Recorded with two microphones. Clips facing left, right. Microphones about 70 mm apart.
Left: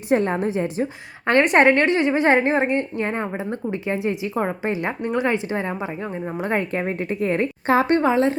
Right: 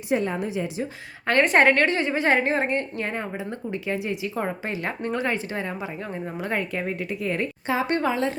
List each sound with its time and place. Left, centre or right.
0.1 s a woman's voice: left
1.3 s a woman's voice: left
7.9 s a woman's voice: left